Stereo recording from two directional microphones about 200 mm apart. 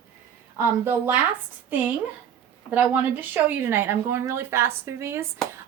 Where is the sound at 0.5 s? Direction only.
10° right (ahead or behind).